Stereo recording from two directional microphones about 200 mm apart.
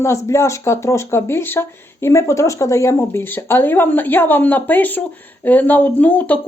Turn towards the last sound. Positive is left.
turn(degrees=5)  # may be behind; listen again after turning